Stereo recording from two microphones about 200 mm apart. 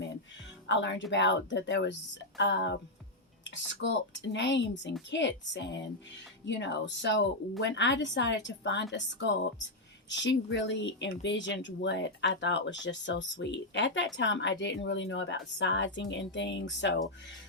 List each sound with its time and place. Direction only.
0.7 s a woman's voice: 65° left (ahead or behind)
3.8 s a woman's voice: 65° left (ahead or behind)